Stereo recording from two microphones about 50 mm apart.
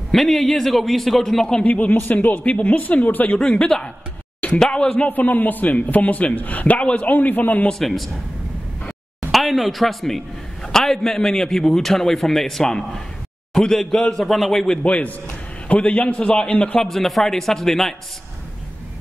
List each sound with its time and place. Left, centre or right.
0.1 s a man's voice: centre
1.6 s a man's voice: left
3.3 s a man's voice: centre
5.0 s a man's voice: left
7.8 s a man's voice: centre
9.3 s a man's voice: centre
14.8 s a man's voice: left
16.8 s a man's voice: centre